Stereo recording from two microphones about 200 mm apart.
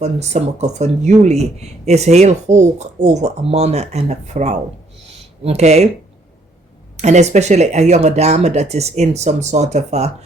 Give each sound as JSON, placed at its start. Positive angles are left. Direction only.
{"t": 0.0, "sound": "speech", "side_deg": -35}
{"t": 6.9, "sound": "speech", "side_deg": -35}